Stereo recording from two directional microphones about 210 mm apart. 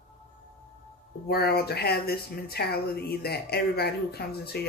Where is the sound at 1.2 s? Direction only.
50° left (ahead or behind).